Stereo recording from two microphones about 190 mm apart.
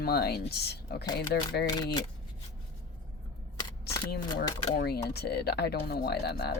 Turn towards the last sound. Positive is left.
turn(degrees=55)  # may be behind; listen again after turning